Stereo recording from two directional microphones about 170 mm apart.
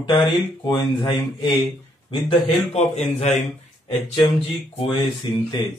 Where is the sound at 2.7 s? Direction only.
40° left (ahead or behind).